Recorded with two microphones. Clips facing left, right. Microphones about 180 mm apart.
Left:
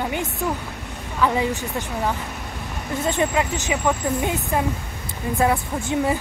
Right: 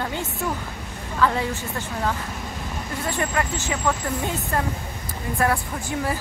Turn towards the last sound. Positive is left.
turn(degrees=20)  # may be behind; listen again after turning